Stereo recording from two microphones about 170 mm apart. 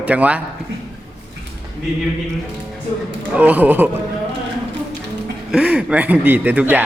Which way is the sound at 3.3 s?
10° right (ahead or behind).